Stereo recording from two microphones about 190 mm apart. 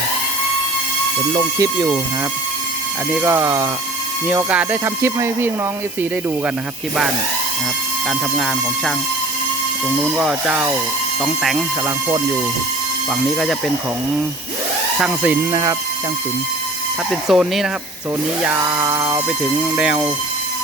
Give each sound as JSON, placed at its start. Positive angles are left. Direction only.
{"t": 1.3, "sound": "speech", "side_deg": -15}
{"t": 3.2, "sound": "speech", "side_deg": -15}
{"t": 10.0, "sound": "speech", "side_deg": 0}
{"t": 14.9, "sound": "speech", "side_deg": -5}
{"t": 17.2, "sound": "speech", "side_deg": 0}
{"t": 18.4, "sound": "speech", "side_deg": -15}
{"t": 19.7, "sound": "speech", "side_deg": -5}